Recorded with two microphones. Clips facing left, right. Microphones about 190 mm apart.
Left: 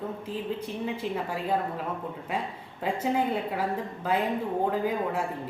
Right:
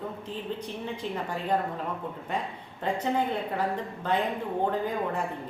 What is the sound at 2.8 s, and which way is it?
Speech, 5° left (ahead or behind).